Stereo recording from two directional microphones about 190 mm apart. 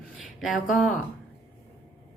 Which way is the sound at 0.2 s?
Centre (ahead or behind).